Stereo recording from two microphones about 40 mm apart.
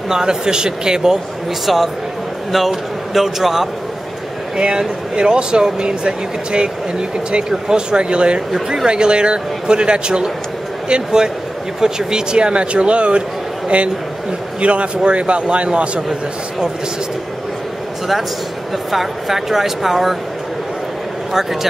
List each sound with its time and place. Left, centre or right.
0.1 s speech: centre
1.7 s speech: centre
4.6 s speech: right
14.6 s speech: right
18.9 s speech: centre